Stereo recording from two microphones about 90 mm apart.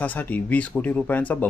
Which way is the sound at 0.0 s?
15° left (ahead or behind).